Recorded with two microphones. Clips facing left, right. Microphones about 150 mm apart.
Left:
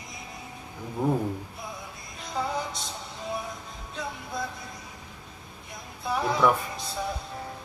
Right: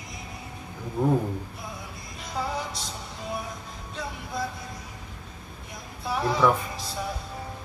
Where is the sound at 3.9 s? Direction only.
Centre (ahead or behind).